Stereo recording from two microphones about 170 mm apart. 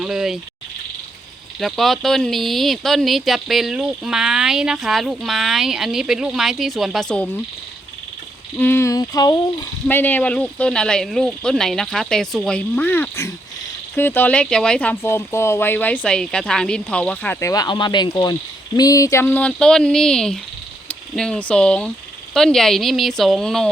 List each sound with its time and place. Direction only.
0.0 s cricket: 5° right (ahead or behind)
1.5 s speech: centre (ahead or behind)
8.5 s a sound: 10° left (ahead or behind)
9.8 s speech: 10° left (ahead or behind)
17.4 s a sound: 20° left (ahead or behind)
18.8 s speech: 20° left (ahead or behind); by 23.6 s centre (ahead or behind)